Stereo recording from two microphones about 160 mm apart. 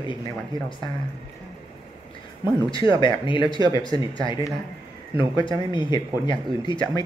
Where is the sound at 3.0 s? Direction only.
30° left (ahead or behind).